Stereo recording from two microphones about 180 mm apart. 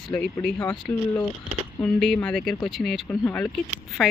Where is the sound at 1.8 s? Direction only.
5° left (ahead or behind).